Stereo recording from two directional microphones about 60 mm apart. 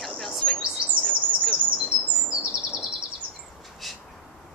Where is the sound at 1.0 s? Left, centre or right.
Centre.